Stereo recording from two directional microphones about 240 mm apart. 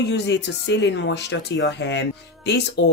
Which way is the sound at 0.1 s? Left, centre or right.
Left.